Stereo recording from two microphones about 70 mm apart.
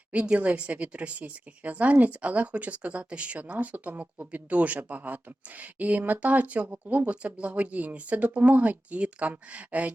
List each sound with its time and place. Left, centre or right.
0.1 s a woman's voice: centre